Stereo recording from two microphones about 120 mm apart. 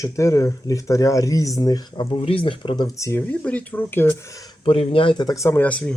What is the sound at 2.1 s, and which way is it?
Speech, 50° left (ahead or behind).